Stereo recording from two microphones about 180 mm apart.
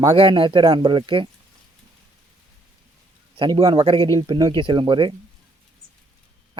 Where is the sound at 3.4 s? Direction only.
25° right (ahead or behind).